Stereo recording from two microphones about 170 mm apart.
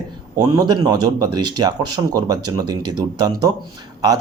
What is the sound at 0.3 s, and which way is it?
Speech, 20° right (ahead or behind).